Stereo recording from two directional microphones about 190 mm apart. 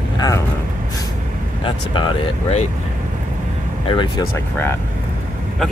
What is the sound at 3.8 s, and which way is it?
Speech, 25° left (ahead or behind).